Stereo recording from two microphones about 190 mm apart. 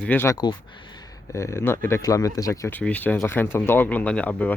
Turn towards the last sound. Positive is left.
turn(degrees=10)  # may be behind; listen again after turning